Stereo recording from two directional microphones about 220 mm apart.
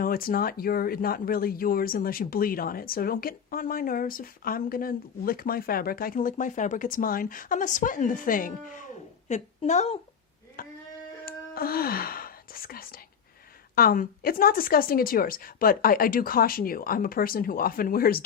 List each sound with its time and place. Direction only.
0.0 s speech: 40° left (ahead or behind)
10.6 s a sound: 40° left (ahead or behind)
11.3 s whispering: 45° left (ahead or behind)
13.7 s speech: 40° left (ahead or behind)